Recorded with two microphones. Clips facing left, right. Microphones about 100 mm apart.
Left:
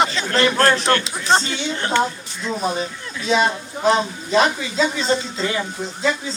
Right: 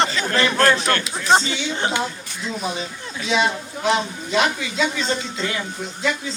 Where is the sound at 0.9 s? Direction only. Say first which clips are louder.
Left 3 dB; 35° left (ahead or behind).